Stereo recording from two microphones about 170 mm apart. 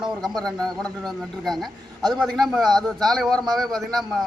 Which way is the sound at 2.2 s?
Centre (ahead or behind).